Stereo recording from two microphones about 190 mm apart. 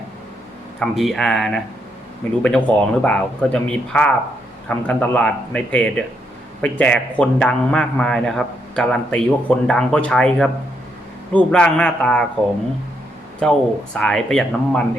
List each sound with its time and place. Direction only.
0.8 s a man's voice: centre (ahead or behind)
13.4 s a man's voice: 5° left (ahead or behind)